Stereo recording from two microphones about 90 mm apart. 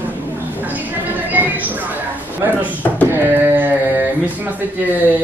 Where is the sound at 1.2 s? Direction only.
20° right (ahead or behind).